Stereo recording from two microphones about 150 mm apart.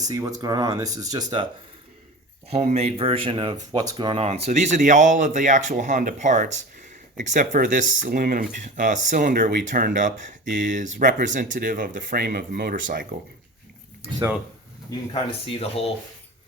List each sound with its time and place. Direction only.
0.0 s speech: 25° right (ahead or behind)
2.5 s speech: 45° right (ahead or behind); by 13.1 s 65° right (ahead or behind)
14.8 s speech: 35° left (ahead or behind)